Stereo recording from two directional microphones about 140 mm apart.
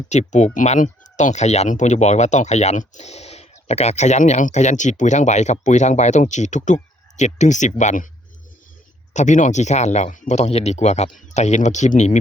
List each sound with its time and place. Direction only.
0.1 s speech: 55° left (ahead or behind)
9.1 s speech: 60° left (ahead or behind)